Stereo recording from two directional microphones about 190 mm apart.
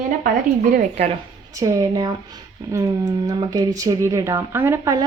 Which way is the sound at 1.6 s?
15° right (ahead or behind).